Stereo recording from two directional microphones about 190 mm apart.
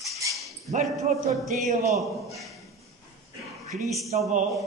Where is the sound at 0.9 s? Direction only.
Centre (ahead or behind).